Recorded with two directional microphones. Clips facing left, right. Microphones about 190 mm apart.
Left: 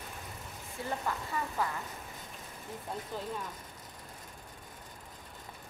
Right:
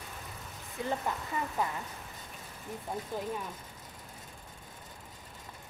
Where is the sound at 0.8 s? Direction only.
20° right (ahead or behind).